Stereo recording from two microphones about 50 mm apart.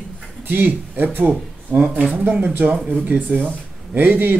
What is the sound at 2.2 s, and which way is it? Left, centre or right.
Speech, right.